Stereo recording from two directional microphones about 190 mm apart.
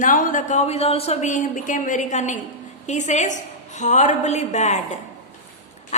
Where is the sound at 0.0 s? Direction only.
45° left (ahead or behind).